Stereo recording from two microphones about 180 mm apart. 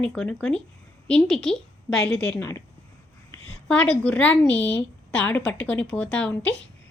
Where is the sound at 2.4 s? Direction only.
15° left (ahead or behind).